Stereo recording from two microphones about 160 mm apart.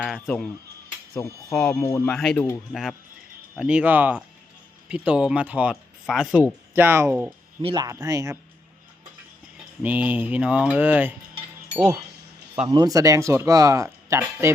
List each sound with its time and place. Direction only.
0.0 s speech: centre (ahead or behind)
1.2 s speech: 20° left (ahead or behind)
1.5 s speech: 5° left (ahead or behind)
3.5 s speech: 5° right (ahead or behind)
6.7 s speech: 15° right (ahead or behind)
7.6 s speech: 30° right (ahead or behind)
7.9 s speech: 20° right (ahead or behind)
9.8 s speech: 10° right (ahead or behind)
12.6 s speech: 25° right (ahead or behind)